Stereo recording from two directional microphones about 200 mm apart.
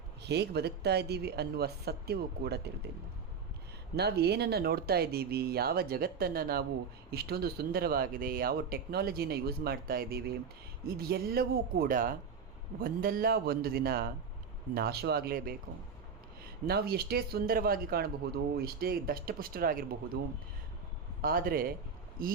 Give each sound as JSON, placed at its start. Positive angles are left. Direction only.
{"t": 0.2, "sound": "speech", "side_deg": -55}
{"t": 3.9, "sound": "speech", "side_deg": -55}
{"t": 21.2, "sound": "speech", "side_deg": -45}